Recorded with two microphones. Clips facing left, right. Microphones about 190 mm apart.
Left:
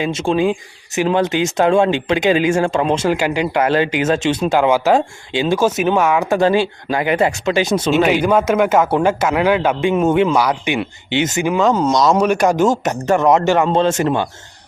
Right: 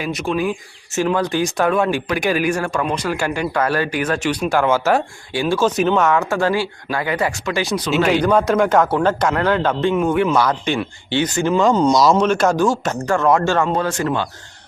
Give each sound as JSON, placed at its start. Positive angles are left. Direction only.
{"t": 0.0, "sound": "speech", "side_deg": 25}
{"t": 8.0, "sound": "a man's voice", "side_deg": 10}
{"t": 9.9, "sound": "speech", "side_deg": 25}
{"t": 10.3, "sound": "speech", "side_deg": 10}
{"t": 11.5, "sound": "a man's voice", "side_deg": 5}
{"t": 12.1, "sound": "speech", "side_deg": 15}